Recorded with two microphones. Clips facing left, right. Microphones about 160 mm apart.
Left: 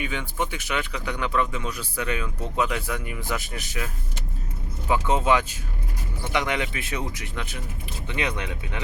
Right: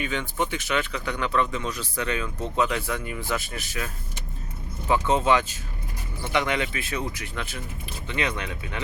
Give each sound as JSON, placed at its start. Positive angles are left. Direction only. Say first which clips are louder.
{"t": 0.0, "sound": "speech", "louder": "right 1 dB", "side_deg": 10}
{"t": 4.9, "sound": "speech", "louder": "even", "side_deg": 10}